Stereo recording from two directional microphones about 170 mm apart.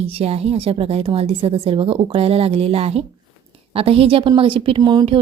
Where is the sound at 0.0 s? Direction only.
35° right (ahead or behind).